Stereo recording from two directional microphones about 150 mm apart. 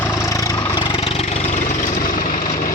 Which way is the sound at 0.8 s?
35° left (ahead or behind).